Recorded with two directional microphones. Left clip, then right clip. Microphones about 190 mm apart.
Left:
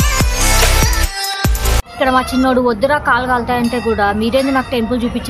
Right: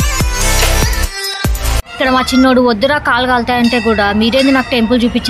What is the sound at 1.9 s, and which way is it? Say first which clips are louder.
Speech: right 3 dB; 15° right (ahead or behind).